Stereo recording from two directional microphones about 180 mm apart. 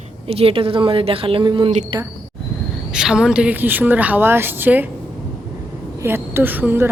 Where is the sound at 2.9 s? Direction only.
5° right (ahead or behind).